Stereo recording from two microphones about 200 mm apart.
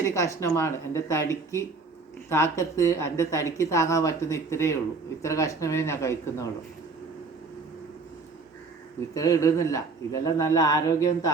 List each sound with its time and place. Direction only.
0.0 s speech: 15° left (ahead or behind)
9.1 s speech: 15° left (ahead or behind)